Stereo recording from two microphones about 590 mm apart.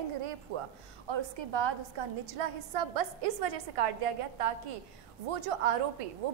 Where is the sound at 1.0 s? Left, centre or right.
Right.